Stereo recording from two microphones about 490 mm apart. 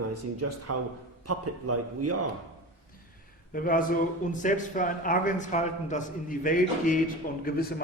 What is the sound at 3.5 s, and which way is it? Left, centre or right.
A man's voice, centre.